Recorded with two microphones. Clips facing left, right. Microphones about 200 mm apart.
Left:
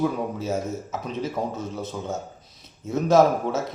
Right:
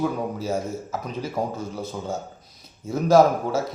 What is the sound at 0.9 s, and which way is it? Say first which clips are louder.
A man's voice: even; 25° left (ahead or behind).